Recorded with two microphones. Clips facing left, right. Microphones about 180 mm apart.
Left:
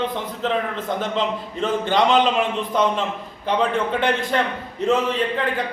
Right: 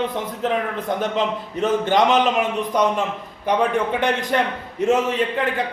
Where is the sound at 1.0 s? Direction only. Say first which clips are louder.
Right 1 dB; 15° right (ahead or behind).